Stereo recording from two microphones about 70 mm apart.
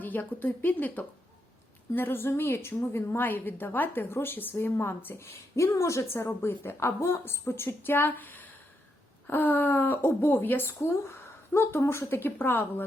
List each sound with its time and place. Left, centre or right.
0.0 s a woman's voice: left
6.2 s a woman's voice: left